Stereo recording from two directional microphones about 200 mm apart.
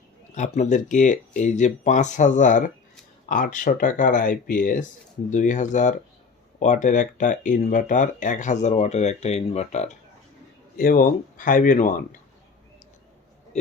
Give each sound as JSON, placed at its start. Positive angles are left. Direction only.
{"t": 0.3, "sound": "speech", "side_deg": 35}
{"t": 10.8, "sound": "speech", "side_deg": 45}